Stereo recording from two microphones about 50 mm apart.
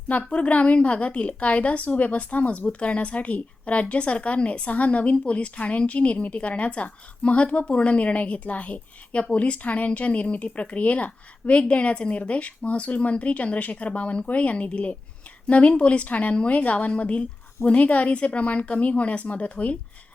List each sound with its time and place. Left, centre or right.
0.3 s a woman's voice: left